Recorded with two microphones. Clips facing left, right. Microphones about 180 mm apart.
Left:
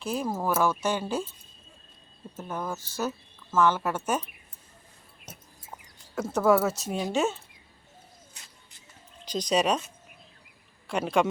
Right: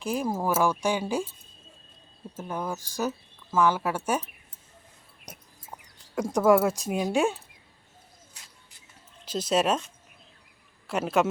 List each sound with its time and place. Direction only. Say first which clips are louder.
0.0 s speech: right 1 dB; 10° right (ahead or behind)
2.3 s speech: right 1 dB; 10° right (ahead or behind)
5.3 s a sound: right 1 dB; 15° right (ahead or behind)
6.1 s speech: right 2 dB; 15° right (ahead or behind)
9.2 s speech: even; 5° right (ahead or behind)